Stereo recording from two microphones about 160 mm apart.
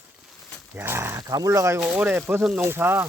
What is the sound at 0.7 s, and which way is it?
Speech, 15° right (ahead or behind).